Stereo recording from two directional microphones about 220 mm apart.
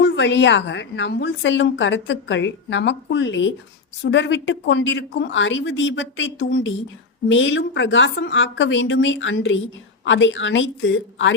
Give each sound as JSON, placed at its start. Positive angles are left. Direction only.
{"t": 0.0, "sound": "a woman's voice", "side_deg": 55}